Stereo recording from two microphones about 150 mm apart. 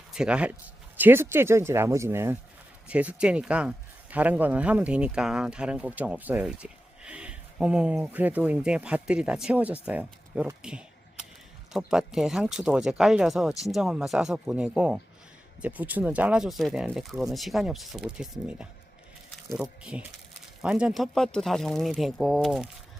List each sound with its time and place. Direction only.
0.1 s speech: 5° right (ahead or behind)
19.8 s speech: 5° right (ahead or behind)